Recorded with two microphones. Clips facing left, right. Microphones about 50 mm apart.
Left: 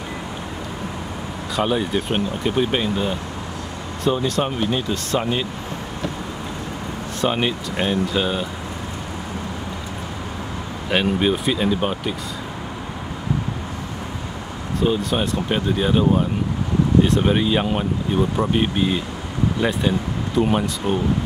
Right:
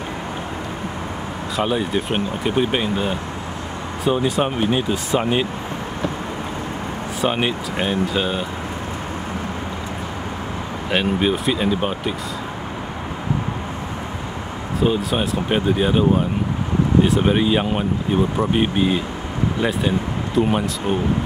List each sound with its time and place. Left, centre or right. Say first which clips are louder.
1.6 s speech: even; centre
7.2 s speech: even; centre
10.9 s speech: even; centre
14.8 s speech: right 1 dB; centre